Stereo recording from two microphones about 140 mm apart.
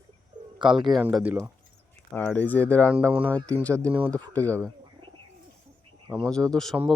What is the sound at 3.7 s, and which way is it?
Speech, 20° right (ahead or behind).